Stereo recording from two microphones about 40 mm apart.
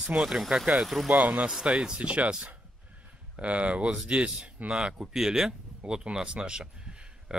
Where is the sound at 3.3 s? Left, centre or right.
Right.